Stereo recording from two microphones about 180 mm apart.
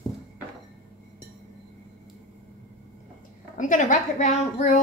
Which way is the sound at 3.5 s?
45° left (ahead or behind).